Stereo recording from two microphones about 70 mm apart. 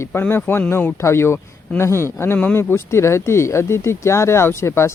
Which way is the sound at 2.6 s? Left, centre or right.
Left.